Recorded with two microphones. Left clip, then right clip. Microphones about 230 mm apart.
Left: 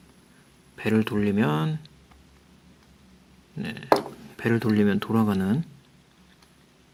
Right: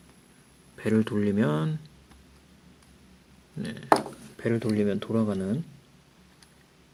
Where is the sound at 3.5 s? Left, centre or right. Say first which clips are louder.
Left 1 dB; centre.